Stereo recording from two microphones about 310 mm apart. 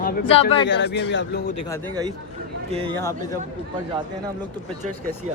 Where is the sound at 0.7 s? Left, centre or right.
Left.